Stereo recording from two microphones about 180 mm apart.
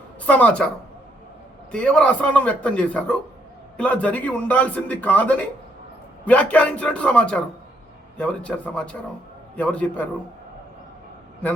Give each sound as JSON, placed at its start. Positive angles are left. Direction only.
{"t": 0.3, "sound": "a man's voice", "side_deg": 10}
{"t": 1.7, "sound": "a man's voice", "side_deg": 5}